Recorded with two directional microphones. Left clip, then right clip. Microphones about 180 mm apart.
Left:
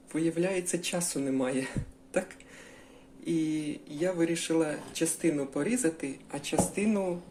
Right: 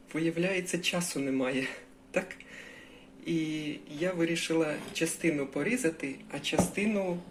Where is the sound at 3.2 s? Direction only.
15° left (ahead or behind).